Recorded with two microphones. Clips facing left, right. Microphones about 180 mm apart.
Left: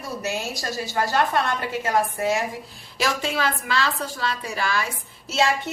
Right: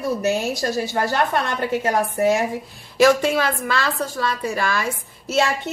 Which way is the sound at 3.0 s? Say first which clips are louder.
Right 9 dB; 50° right (ahead or behind).